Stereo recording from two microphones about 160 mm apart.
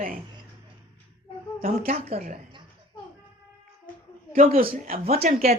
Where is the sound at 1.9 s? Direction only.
40° right (ahead or behind).